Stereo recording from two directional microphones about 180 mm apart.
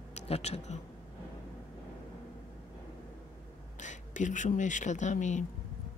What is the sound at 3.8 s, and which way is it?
Speech, 45° left (ahead or behind).